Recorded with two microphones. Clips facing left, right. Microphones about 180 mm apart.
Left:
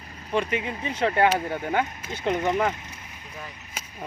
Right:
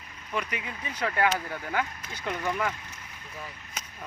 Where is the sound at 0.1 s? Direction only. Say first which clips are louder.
Left 7 dB; 35° left (ahead or behind).